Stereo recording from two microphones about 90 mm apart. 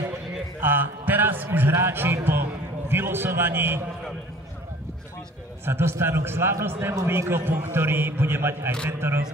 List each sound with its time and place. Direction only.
0.6 s a sound: 20° right (ahead or behind)
2.9 s a man's voice: 25° right (ahead or behind)
5.7 s a man's voice: 25° right (ahead or behind)